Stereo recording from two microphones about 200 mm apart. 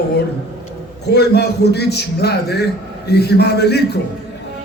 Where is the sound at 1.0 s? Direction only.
55° left (ahead or behind).